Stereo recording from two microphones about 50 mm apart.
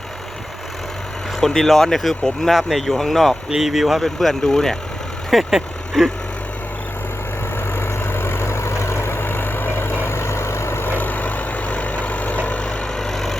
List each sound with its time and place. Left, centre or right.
1.4 s speech: centre
3.5 s speech: centre
5.3 s vehicle: centre
7.8 s vehicle: left
10.9 s vehicle: left
13.0 s vehicle: centre